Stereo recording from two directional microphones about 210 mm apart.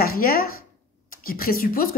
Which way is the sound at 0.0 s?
45° left (ahead or behind).